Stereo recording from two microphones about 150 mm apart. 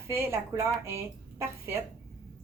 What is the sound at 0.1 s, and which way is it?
A woman's voice, 15° right (ahead or behind).